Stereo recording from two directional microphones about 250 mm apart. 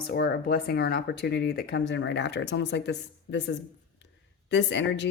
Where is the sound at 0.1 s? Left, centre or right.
Left.